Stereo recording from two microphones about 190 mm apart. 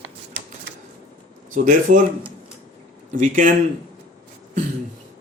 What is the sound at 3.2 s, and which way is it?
Speech, 45° right (ahead or behind).